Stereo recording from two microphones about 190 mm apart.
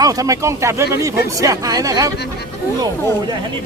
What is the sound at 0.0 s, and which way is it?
Speech, 20° right (ahead or behind).